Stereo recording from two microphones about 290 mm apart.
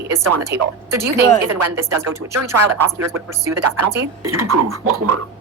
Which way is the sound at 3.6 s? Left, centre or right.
Right.